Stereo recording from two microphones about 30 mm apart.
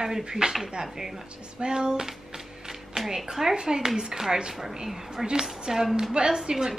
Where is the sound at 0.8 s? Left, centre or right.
Centre.